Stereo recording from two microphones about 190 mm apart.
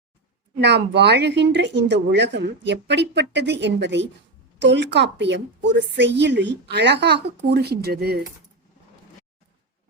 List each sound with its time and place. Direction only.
0.6 s speech: 60° right (ahead or behind)